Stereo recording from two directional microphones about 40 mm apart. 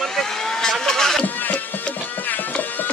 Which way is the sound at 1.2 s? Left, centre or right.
Left.